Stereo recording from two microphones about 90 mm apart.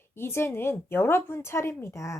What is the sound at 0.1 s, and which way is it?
A woman's voice, 25° left (ahead or behind).